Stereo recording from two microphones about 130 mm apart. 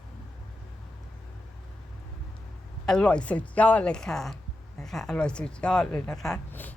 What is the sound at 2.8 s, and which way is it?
Speech, 5° left (ahead or behind).